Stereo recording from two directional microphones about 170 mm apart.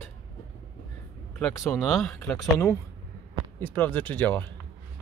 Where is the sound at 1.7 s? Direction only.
Centre (ahead or behind).